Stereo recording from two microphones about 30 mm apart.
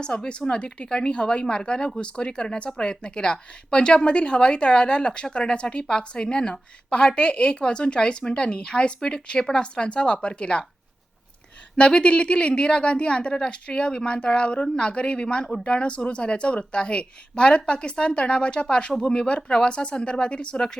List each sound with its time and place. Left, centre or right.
0.4 s speech: centre
0.9 s speech: left
11.8 s speech: left